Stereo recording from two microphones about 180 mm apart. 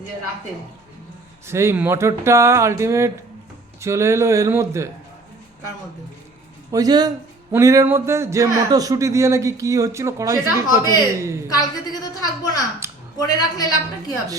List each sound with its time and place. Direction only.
1.5 s a man's voice: 15° right (ahead or behind)
6.7 s a man's voice: 20° right (ahead or behind)
10.5 s a woman's voice: 20° left (ahead or behind)
12.8 s a sound: 15° right (ahead or behind)
13.2 s a woman's voice: 20° left (ahead or behind)